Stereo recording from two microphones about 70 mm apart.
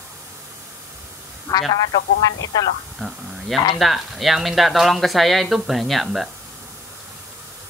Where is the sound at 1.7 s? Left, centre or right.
Left.